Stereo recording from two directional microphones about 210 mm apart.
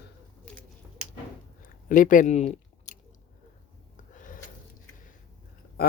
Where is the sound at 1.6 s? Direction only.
40° left (ahead or behind).